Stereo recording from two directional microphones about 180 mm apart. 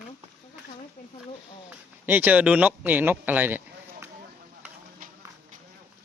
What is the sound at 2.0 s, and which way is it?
Speech, 10° right (ahead or behind).